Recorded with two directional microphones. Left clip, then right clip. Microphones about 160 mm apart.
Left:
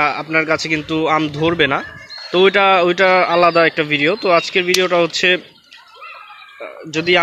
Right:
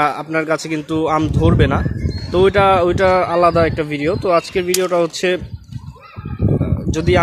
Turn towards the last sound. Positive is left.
turn(degrees=-20)  # may be behind; listen again after turning